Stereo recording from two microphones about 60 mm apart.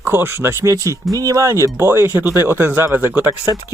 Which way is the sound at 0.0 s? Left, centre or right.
Right.